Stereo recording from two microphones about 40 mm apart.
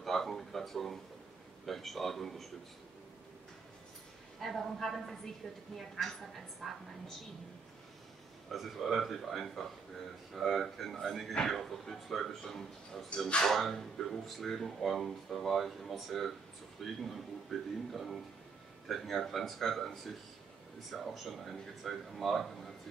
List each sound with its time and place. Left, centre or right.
0.0 s a sound: centre
1.7 s speech: centre
4.4 s speech: centre
8.5 s speech: centre